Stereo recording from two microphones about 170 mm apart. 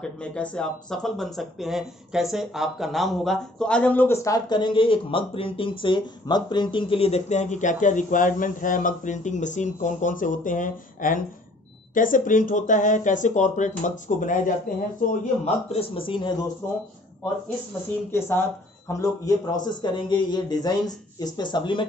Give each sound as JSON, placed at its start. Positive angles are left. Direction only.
{"t": 0.0, "sound": "speech", "side_deg": 5}
{"t": 15.4, "sound": "speech", "side_deg": 35}
{"t": 18.1, "sound": "speech", "side_deg": 15}